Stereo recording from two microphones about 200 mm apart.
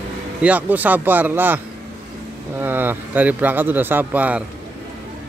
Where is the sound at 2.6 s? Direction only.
10° right (ahead or behind).